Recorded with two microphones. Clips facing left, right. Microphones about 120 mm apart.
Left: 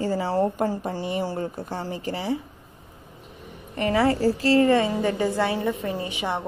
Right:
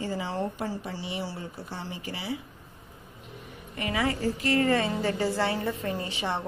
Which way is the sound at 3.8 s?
35° left (ahead or behind).